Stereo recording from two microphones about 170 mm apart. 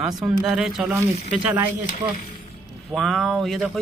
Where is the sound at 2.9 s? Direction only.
Centre (ahead or behind).